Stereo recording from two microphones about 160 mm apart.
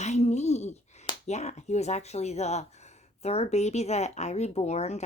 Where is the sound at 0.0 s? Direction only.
45° left (ahead or behind).